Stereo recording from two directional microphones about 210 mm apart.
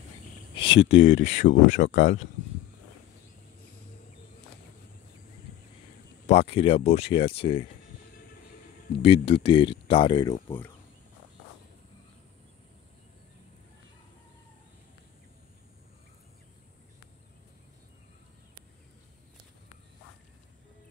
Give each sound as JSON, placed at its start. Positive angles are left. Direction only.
{"t": 0.6, "sound": "a sound", "side_deg": 25}
{"t": 0.9, "sound": "speech", "side_deg": 35}
{"t": 6.2, "sound": "speech", "side_deg": 30}
{"t": 8.9, "sound": "speech", "side_deg": 25}